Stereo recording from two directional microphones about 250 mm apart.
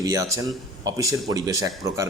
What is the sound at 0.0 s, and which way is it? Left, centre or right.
Speech, centre.